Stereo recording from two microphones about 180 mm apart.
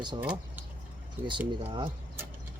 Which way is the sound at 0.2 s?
10° right (ahead or behind).